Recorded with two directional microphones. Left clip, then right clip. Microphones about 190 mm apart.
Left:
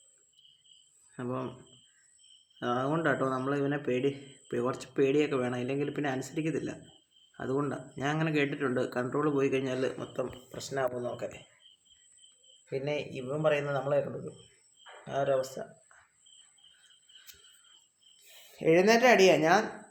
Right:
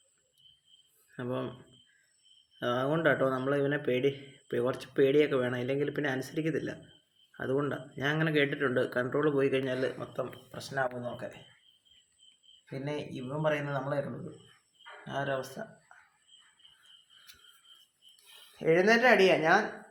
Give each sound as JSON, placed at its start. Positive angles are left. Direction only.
{"t": 1.1, "sound": "speech", "side_deg": 0}
{"t": 2.6, "sound": "speech", "side_deg": 5}
{"t": 12.8, "sound": "speech", "side_deg": 10}
{"t": 15.0, "sound": "speech", "side_deg": 10}
{"t": 18.6, "sound": "speech", "side_deg": 25}